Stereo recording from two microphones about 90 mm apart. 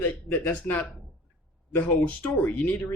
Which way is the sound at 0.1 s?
20° left (ahead or behind).